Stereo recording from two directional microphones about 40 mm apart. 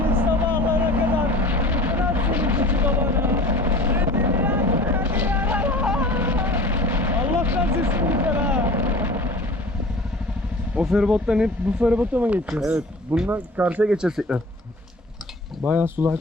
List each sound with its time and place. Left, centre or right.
0.0 s vehicle: right
6.0 s a sound: right
7.2 s a sound: right
7.4 s a sound: right
8.6 s vehicle: right
10.9 s speech: centre
11.9 s speech: right
13.2 s speech: right
13.8 s speech: right
15.6 s speech: right